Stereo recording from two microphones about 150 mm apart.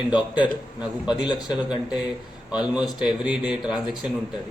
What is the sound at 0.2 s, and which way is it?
Speech, 30° left (ahead or behind).